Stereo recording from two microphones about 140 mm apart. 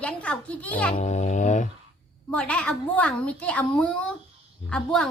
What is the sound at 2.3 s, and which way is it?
A woman's voice, 10° left (ahead or behind).